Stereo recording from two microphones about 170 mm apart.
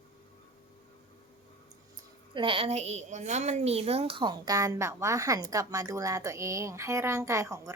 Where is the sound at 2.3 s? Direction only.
30° right (ahead or behind).